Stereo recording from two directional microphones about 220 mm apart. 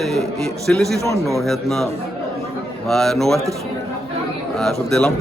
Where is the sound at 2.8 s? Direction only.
Centre (ahead or behind).